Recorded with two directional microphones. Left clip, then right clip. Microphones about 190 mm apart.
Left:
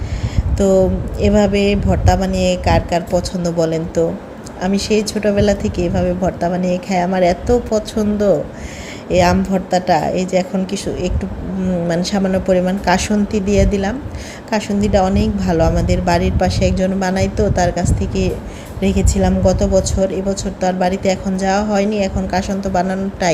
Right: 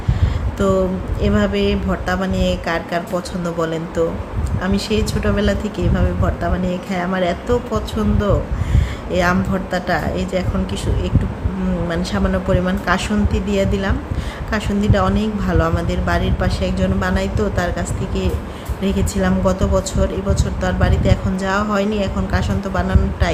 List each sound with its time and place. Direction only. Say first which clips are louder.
0.6 s a woman's voice: left 4 dB; 20° left (ahead or behind)